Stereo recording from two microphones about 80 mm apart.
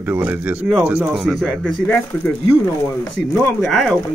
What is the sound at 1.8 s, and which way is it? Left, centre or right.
Speech, left.